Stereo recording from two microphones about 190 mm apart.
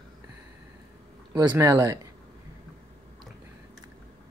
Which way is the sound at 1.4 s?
15° right (ahead or behind).